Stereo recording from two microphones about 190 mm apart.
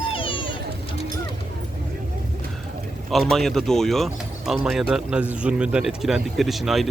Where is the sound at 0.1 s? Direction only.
25° left (ahead or behind).